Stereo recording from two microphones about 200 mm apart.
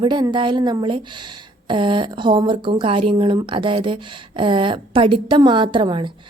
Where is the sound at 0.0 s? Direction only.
20° right (ahead or behind).